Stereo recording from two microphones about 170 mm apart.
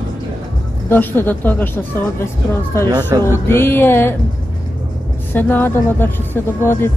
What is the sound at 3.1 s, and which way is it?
Music, 20° right (ahead or behind).